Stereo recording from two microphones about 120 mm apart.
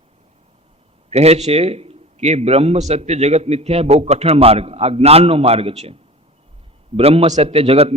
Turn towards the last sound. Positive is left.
turn(degrees=-55)  # may be behind; listen again after turning